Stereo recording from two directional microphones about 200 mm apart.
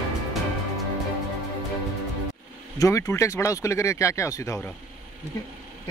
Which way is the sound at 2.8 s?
15° left (ahead or behind).